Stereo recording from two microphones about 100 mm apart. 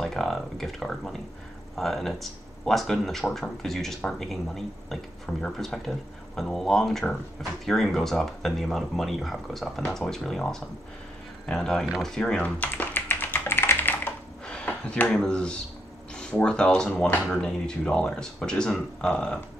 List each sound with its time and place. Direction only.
0.0 s speech: 5° left (ahead or behind)
11.8 s typing: centre (ahead or behind); by 14.1 s 20° left (ahead or behind)
14.4 s speech: 10° left (ahead or behind)